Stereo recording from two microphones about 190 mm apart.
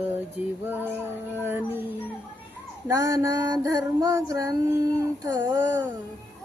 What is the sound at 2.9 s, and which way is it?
Female singing, 20° right (ahead or behind).